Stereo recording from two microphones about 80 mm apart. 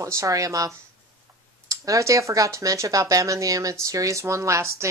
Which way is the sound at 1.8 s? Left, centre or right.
Right.